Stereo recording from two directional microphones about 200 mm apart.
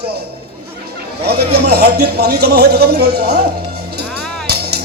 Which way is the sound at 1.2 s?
50° right (ahead or behind).